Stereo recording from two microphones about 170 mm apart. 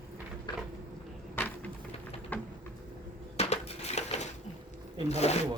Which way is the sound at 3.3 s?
40° left (ahead or behind).